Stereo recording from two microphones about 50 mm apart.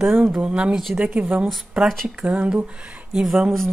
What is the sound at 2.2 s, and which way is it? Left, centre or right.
Speech, right.